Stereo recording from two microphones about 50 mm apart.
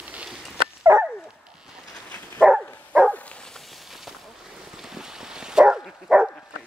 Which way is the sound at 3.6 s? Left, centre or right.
Centre.